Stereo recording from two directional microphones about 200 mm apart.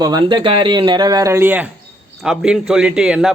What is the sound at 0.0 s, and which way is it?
A man's voice, 20° right (ahead or behind).